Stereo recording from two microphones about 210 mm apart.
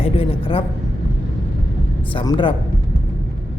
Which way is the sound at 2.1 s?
20° left (ahead or behind).